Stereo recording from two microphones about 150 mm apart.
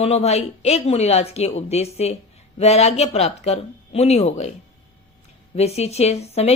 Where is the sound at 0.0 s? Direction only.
45° left (ahead or behind).